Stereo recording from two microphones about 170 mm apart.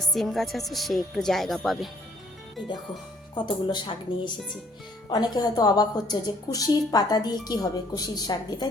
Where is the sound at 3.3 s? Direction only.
25° left (ahead or behind).